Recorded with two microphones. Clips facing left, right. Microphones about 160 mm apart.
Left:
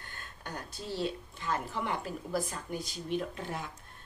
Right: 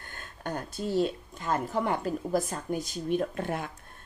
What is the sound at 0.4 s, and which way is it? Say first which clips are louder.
Speech: right 9 dB; 50° right (ahead or behind).